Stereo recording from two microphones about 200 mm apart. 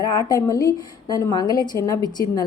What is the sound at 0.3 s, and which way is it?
A woman's voice, 15° left (ahead or behind).